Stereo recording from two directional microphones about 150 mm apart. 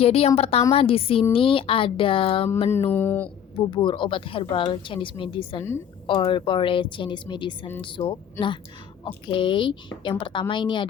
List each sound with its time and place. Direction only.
0.0 s a woman's voice: 45° left (ahead or behind)
2.9 s speech: 15° left (ahead or behind)
3.7 s speech: 35° left (ahead or behind)